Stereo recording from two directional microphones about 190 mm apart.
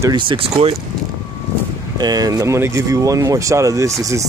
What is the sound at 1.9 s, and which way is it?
Speech, 20° right (ahead or behind).